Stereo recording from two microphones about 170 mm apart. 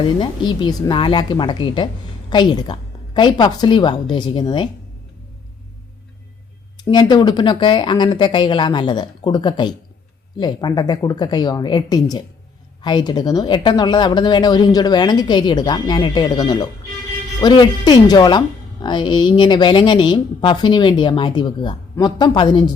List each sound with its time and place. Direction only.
0.0 s speech: 30° left (ahead or behind)
6.7 s speech: 25° left (ahead or behind)